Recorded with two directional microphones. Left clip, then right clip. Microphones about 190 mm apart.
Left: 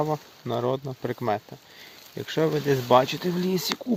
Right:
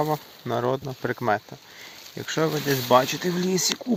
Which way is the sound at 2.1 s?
15° left (ahead or behind).